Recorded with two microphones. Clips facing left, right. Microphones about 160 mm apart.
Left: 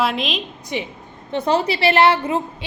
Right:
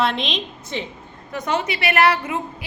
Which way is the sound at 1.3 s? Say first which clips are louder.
Left 5 dB; 30° left (ahead or behind).